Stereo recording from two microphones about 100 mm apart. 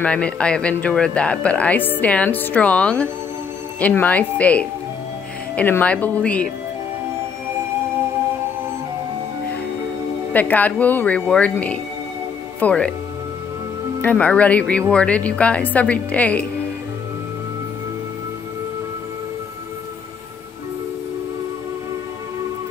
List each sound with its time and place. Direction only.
0.0 s speech: 10° left (ahead or behind)
10.3 s speech: 15° left (ahead or behind)
14.0 s speech: 15° left (ahead or behind)